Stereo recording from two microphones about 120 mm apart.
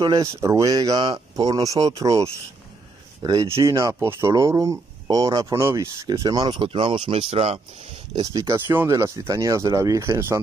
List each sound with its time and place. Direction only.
0.0 s speech: 30° right (ahead or behind)
3.4 s speech: 25° right (ahead or behind); by 7.6 s 55° right (ahead or behind)
8.2 s speech: 30° right (ahead or behind)